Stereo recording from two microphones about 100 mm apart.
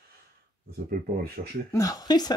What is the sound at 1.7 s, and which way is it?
Speech, 35° left (ahead or behind).